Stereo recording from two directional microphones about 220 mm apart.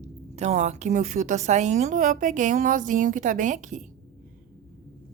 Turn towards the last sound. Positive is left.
turn(degrees=-35)  # may be behind; listen again after turning